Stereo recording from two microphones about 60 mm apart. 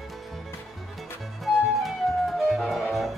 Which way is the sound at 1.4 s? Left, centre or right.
Centre.